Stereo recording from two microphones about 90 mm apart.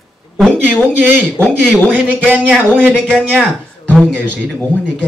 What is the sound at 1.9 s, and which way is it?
Speech, 15° right (ahead or behind).